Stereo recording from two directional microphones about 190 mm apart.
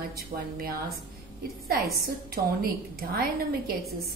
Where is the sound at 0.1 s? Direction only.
50° right (ahead or behind).